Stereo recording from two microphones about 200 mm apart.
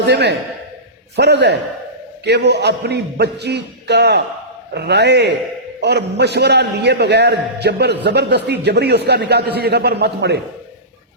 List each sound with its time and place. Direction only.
0.0 s a man's voice: 55° right (ahead or behind)